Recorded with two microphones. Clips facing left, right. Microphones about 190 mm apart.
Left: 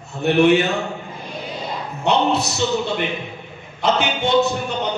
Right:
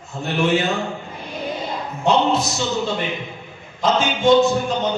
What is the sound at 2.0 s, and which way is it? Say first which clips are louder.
Speech: right 1 dB; 65° left (ahead or behind).